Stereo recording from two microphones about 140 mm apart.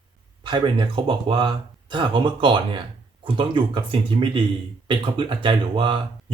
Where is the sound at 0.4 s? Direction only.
35° right (ahead or behind).